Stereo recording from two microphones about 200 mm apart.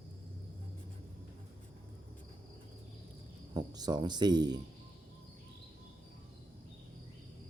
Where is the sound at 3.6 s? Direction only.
20° right (ahead or behind).